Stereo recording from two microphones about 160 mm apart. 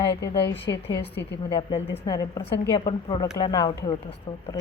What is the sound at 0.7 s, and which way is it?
Speech, 20° left (ahead or behind).